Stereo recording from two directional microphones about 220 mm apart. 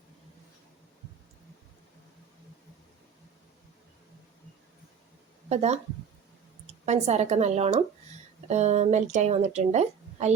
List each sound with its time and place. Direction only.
5.5 s speech: 30° right (ahead or behind)
6.8 s a woman's voice: 30° right (ahead or behind)